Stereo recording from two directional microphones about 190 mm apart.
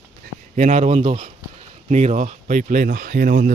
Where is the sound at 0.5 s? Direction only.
40° right (ahead or behind).